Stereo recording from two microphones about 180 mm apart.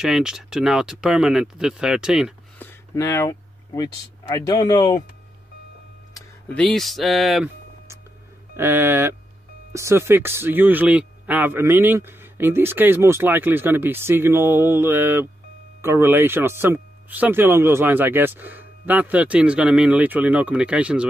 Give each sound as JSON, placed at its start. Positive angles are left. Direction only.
{"t": 0.0, "sound": "speech", "side_deg": -5}
{"t": 2.6, "sound": "speech", "side_deg": 15}
{"t": 6.5, "sound": "speech", "side_deg": 0}
{"t": 8.5, "sound": "speech", "side_deg": -10}